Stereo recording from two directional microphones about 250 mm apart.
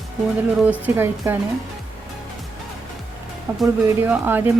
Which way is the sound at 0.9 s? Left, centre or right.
Centre.